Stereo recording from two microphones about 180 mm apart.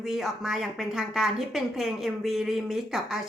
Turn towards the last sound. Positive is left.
turn(degrees=0)  # may be behind; listen again after turning